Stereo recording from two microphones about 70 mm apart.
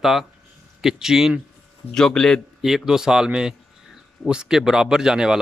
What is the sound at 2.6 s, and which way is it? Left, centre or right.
A man's voice, centre.